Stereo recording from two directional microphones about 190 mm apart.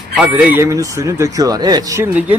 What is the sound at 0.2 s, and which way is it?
Speech, 5° right (ahead or behind).